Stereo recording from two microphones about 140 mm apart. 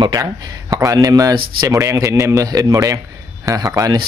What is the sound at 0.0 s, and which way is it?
A man's voice, 25° right (ahead or behind).